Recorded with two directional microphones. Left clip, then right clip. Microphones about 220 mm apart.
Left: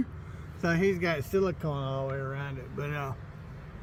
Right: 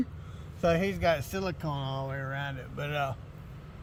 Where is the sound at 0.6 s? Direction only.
45° right (ahead or behind).